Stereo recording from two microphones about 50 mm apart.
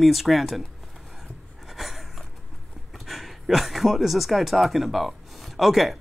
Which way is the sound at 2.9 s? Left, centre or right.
Centre.